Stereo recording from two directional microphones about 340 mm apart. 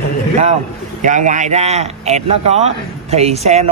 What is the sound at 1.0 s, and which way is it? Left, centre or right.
A man's voice, right.